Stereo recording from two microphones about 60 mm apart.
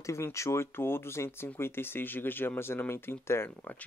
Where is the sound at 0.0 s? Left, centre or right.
Left.